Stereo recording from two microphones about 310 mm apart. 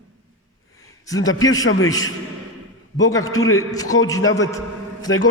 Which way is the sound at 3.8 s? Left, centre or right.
Left.